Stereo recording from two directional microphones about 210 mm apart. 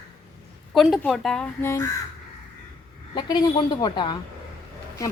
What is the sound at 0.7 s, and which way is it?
Speech, centre (ahead or behind).